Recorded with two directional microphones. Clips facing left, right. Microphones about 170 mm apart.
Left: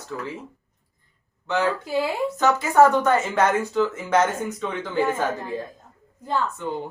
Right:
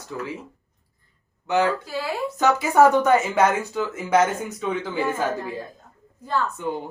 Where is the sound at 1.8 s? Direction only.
20° left (ahead or behind).